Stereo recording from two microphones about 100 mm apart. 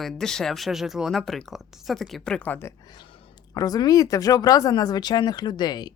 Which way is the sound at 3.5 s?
40° left (ahead or behind).